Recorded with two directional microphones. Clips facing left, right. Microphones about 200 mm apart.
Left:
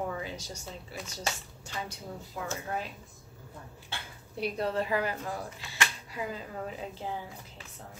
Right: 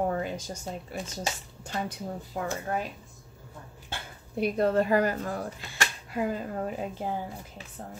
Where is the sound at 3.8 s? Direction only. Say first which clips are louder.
Right 5 dB; 50° right (ahead or behind).